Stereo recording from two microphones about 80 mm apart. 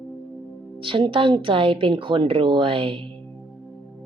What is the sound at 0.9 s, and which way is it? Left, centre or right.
A woman's voice, right.